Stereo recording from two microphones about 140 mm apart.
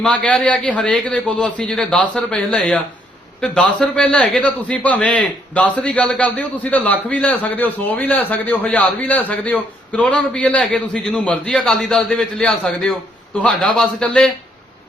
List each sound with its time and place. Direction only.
0.0 s a man's voice: 5° left (ahead or behind)